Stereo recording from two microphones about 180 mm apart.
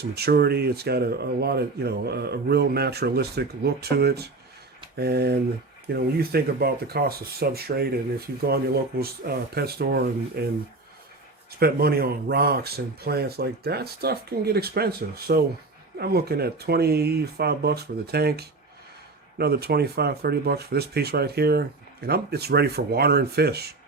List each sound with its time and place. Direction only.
0.0 s speech: 65° right (ahead or behind)
9.0 s speech: 60° right (ahead or behind)
11.6 s speech: 60° right (ahead or behind)